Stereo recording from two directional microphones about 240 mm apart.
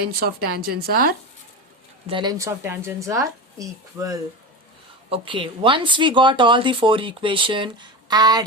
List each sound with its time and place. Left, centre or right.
0.0 s a woman's voice: right
2.0 s a woman's voice: centre